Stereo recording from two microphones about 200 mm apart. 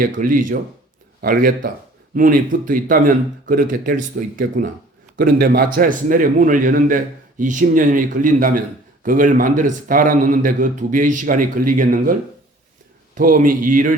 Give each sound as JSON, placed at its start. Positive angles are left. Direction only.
{"t": 0.0, "sound": "a man's voice", "side_deg": -45}
{"t": 13.1, "sound": "speech", "side_deg": -45}